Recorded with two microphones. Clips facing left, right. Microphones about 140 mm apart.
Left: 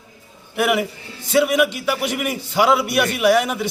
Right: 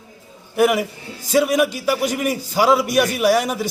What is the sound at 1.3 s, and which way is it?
A man's voice, 40° right (ahead or behind).